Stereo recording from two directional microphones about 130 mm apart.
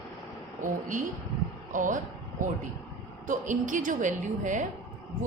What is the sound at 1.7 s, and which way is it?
Speech, 90° right.